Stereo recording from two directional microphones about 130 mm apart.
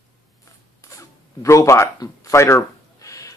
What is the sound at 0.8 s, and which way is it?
Zipper, 25° left (ahead or behind).